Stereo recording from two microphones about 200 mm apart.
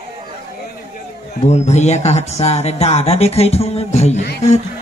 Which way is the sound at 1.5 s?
35° left (ahead or behind).